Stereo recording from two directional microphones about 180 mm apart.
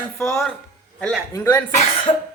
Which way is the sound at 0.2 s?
Centre (ahead or behind).